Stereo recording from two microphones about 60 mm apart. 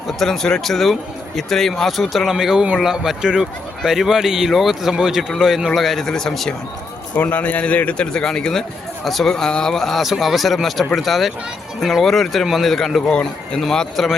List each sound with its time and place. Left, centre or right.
0.2 s a man's voice: centre
7.2 s a man's voice: left
8.0 s a man's voice: centre
9.3 s a man's voice: centre